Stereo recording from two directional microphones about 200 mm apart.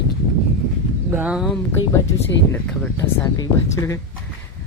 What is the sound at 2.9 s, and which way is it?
Speech, 15° left (ahead or behind).